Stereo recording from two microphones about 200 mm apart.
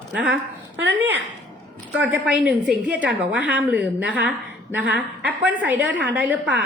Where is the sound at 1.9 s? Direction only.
10° right (ahead or behind).